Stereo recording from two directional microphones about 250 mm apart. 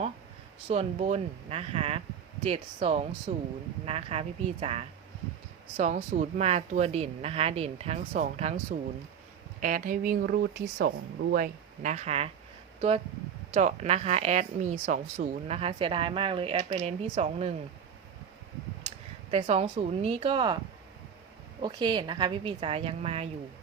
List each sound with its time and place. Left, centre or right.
0.7 s speech: right
9.6 s speech: right
13.5 s speech: right
19.3 s speech: right
21.6 s speech: centre